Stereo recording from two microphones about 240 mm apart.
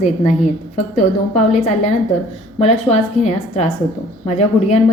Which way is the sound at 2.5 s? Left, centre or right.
Left.